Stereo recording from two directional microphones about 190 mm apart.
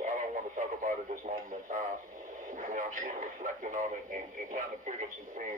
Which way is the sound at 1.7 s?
45° right (ahead or behind).